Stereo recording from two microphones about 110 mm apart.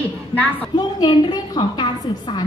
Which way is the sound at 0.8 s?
45° left (ahead or behind).